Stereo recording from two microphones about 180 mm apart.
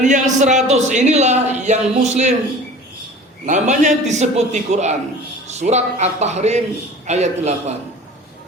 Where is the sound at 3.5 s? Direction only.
40° right (ahead or behind).